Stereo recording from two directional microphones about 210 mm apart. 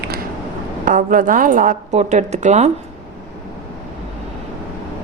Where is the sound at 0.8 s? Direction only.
40° right (ahead or behind).